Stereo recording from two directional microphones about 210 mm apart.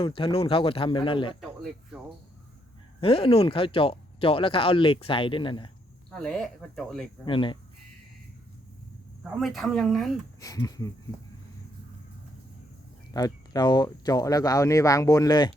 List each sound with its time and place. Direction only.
0.0 s speech: 25° left (ahead or behind)
3.0 s speech: 25° left (ahead or behind)
6.1 s speech: 5° left (ahead or behind)
7.3 s speech: 25° left (ahead or behind)
9.4 s speech: centre (ahead or behind)
10.4 s speech: 15° left (ahead or behind)
13.1 s speech: 15° left (ahead or behind)